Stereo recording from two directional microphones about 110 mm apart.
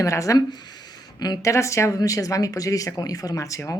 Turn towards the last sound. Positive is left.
turn(degrees=30)  # may be behind; listen again after turning